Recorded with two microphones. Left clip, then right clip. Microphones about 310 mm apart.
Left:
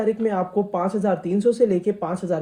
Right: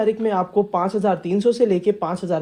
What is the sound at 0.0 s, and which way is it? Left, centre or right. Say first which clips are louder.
Speech: right 2 dB; centre.